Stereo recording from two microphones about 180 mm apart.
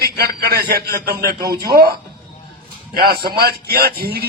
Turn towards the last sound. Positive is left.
turn(degrees=-60)  # may be behind; listen again after turning